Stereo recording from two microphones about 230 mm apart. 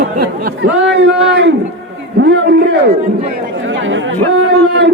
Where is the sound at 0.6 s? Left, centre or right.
Right.